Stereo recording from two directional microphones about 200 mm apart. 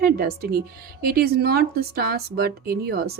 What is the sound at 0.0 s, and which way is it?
Speech, 50° right (ahead or behind).